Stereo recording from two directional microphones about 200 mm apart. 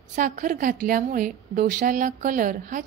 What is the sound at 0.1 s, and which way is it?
A woman's voice, 40° right (ahead or behind).